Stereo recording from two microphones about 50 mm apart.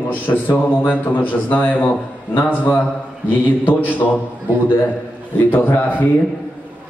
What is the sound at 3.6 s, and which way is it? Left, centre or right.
Speech, left.